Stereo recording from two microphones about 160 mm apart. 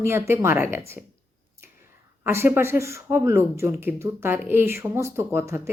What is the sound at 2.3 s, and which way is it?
Speech, 15° right (ahead or behind).